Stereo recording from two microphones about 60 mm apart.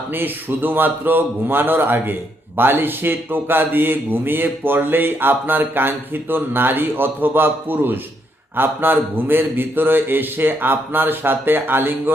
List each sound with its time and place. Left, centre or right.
0.1 s a man's voice: right